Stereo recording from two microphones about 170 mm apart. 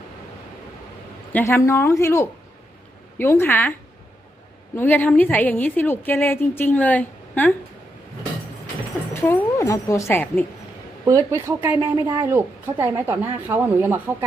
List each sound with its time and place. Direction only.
1.3 s a woman's voice: 10° left (ahead or behind)
9.2 s a woman's voice: 15° left (ahead or behind)
11.0 s speech: 20° right (ahead or behind)